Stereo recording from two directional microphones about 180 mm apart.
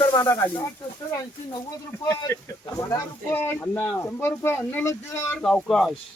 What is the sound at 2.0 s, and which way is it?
Speech, 15° left (ahead or behind).